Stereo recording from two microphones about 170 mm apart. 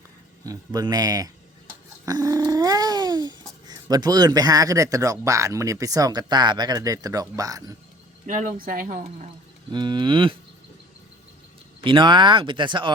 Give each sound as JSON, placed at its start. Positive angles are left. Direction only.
{"t": 0.4, "sound": "speech", "side_deg": -20}
{"t": 8.3, "sound": "speech", "side_deg": -50}
{"t": 9.7, "sound": "speech", "side_deg": -25}
{"t": 11.8, "sound": "speech", "side_deg": -30}